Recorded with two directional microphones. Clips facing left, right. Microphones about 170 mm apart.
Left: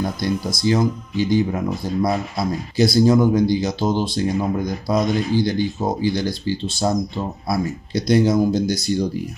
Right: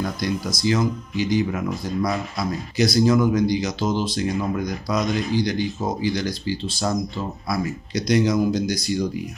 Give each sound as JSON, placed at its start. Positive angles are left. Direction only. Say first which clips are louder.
{"t": 0.0, "sound": "speech", "louder": "left 2 dB", "side_deg": 25}